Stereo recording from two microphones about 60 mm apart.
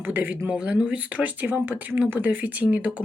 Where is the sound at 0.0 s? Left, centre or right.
Right.